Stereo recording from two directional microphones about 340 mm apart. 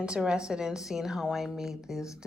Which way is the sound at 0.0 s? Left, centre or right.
Centre.